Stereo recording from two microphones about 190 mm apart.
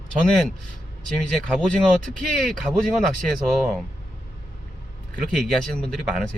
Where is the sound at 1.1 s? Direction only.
Centre (ahead or behind).